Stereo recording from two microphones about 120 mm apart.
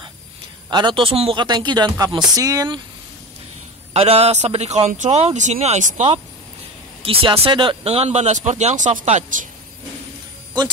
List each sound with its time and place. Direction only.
0.7 s a man's voice: 35° right (ahead or behind)
1.0 s speech: 50° right (ahead or behind); by 2.8 s 30° right (ahead or behind)
3.9 s speech: 55° right (ahead or behind); by 6.0 s 85° right
7.0 s speech: 50° right (ahead or behind); by 9.5 s 80° right